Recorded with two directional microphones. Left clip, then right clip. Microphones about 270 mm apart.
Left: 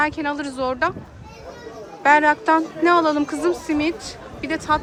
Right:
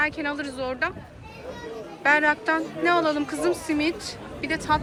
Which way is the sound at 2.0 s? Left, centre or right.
Centre.